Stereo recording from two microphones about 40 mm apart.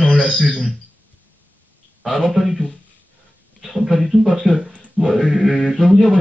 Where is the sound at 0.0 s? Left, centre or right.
Left.